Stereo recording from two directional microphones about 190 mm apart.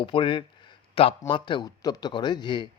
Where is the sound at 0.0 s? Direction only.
25° left (ahead or behind).